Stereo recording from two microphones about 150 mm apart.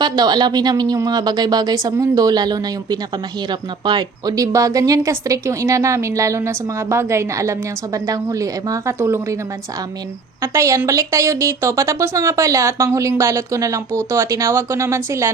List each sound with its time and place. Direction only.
0.0 s speech: 30° right (ahead or behind)
10.4 s speech: 20° right (ahead or behind)